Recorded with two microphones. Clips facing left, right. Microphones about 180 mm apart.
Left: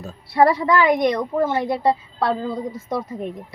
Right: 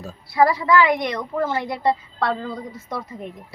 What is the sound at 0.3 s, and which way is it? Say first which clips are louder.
Speech: left 2 dB; 30° left (ahead or behind).